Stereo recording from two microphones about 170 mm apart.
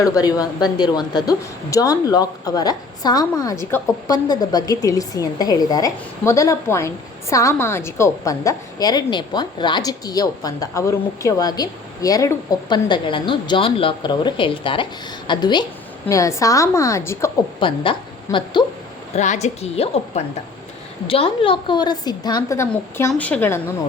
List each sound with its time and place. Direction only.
0.0 s a woman's voice: 20° left (ahead or behind)
17.6 s a woman's voice: 30° left (ahead or behind)
19.1 s a woman's voice: 40° left (ahead or behind); by 23.6 s 10° left (ahead or behind)